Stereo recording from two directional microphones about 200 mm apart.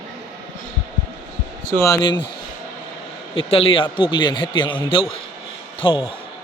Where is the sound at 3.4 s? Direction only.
25° left (ahead or behind).